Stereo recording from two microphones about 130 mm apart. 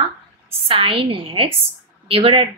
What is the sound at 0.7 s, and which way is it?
Speech, 45° right (ahead or behind).